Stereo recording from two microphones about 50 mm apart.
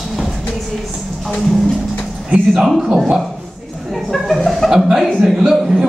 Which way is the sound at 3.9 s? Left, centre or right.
Centre.